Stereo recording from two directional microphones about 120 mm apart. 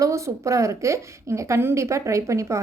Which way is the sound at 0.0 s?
25° right (ahead or behind).